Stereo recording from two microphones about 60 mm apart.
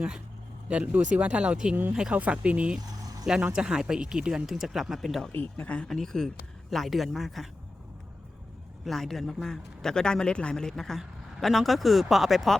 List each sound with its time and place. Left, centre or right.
0.7 s speech: right
3.0 s vehicle: right
3.5 s speech: centre
5.4 s speech: left
5.9 s speech: centre
8.8 s a man's voice: centre